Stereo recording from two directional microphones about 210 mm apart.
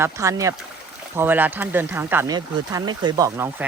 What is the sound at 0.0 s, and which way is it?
Speech, 15° right (ahead or behind).